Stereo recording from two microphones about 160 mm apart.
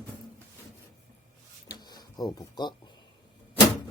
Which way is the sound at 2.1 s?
25° left (ahead or behind).